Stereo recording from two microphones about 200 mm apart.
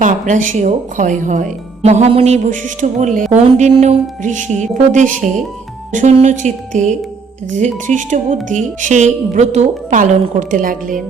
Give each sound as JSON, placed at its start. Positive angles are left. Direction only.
{"t": 0.0, "sound": "speech", "side_deg": -40}